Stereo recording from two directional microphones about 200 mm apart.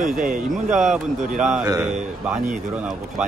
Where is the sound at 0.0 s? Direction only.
40° right (ahead or behind).